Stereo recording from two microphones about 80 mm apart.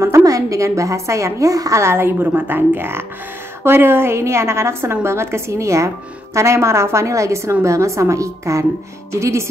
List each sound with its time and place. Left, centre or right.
0.0 s a woman's voice: right